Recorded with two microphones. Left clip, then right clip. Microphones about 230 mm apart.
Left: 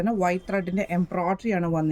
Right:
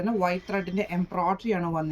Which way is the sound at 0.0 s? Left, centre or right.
Left.